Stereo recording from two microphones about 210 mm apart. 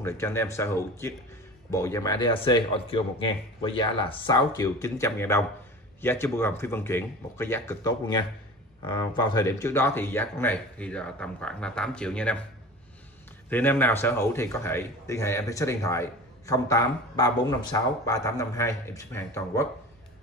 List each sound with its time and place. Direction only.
0.0 s speech: 10° left (ahead or behind)
13.5 s speech: 10° left (ahead or behind)